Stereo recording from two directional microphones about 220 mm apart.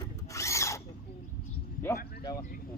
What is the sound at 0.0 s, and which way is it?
Drill, 15° left (ahead or behind).